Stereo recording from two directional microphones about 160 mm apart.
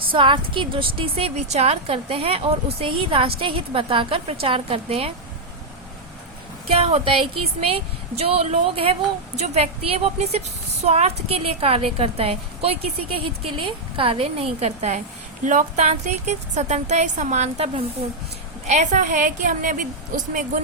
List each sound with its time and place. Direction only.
0.1 s a woman's voice: 30° right (ahead or behind)
6.7 s a woman's voice: 40° right (ahead or behind)